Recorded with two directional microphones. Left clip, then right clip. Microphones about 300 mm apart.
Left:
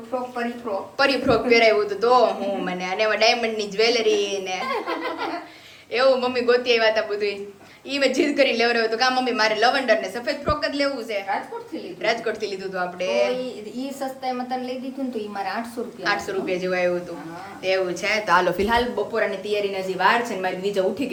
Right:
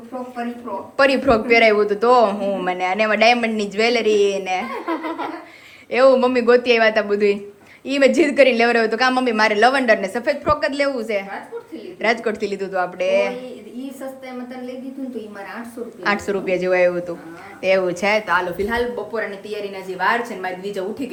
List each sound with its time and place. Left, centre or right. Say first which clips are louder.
0.9 s a man's voice: right 5 dB; right
5.9 s a man's voice: right 5 dB; right
16.0 s a man's voice: right 4 dB; right
18.6 s a woman's voice: even; centre